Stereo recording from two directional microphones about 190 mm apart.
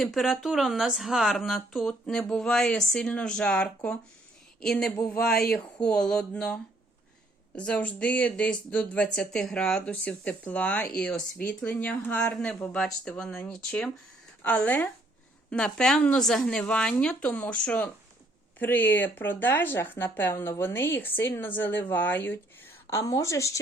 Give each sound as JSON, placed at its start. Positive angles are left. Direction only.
{"t": 0.0, "sound": "speech", "side_deg": 0}